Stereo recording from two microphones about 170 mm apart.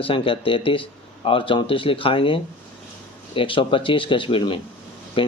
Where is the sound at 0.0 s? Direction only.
30° left (ahead or behind).